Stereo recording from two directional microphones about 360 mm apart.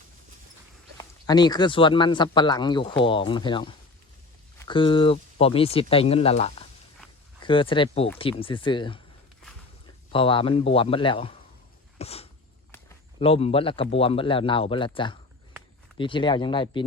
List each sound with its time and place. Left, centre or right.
0.9 s speech: centre
10.1 s speech: centre
11.9 s a sound: centre
13.9 s speech: centre